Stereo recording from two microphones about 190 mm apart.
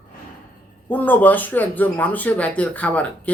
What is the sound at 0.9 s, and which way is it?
Speech, 10° left (ahead or behind).